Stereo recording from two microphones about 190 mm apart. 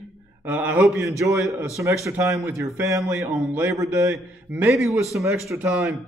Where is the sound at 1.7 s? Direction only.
15° right (ahead or behind).